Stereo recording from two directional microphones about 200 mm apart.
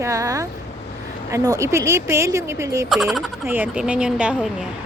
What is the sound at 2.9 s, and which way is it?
Fowl, centre (ahead or behind).